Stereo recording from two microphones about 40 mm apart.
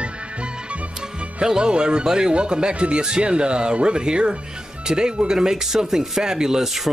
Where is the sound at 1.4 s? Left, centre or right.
Centre.